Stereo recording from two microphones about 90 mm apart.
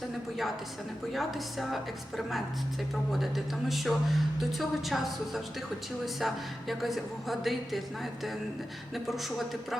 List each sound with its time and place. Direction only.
1.1 s speech: centre (ahead or behind)